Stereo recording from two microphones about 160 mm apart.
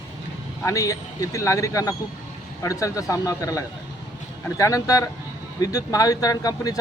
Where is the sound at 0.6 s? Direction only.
20° left (ahead or behind).